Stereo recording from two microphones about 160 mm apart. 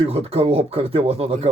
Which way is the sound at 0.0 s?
40° right (ahead or behind).